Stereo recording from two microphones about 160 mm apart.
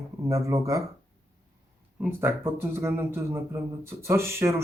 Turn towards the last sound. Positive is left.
turn(degrees=-15)  # may be behind; listen again after turning